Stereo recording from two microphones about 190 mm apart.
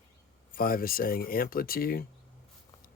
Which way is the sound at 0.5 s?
50° left (ahead or behind).